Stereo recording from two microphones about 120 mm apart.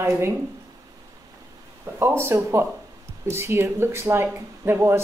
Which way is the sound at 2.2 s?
20° right (ahead or behind).